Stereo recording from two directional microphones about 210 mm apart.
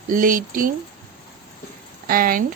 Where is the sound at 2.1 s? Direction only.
40° right (ahead or behind).